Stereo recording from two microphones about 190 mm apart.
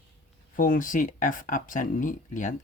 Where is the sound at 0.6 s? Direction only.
45° left (ahead or behind).